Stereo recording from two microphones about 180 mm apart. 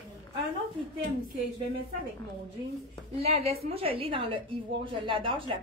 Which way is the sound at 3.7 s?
30° right (ahead or behind).